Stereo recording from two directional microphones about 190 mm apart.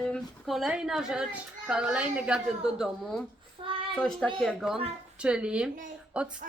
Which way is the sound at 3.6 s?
30° right (ahead or behind).